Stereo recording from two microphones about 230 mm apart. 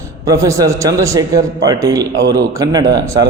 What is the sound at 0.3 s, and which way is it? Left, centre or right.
A man's voice, centre.